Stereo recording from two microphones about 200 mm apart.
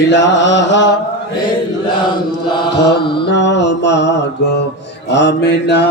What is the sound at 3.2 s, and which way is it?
Mantra, 60° left (ahead or behind).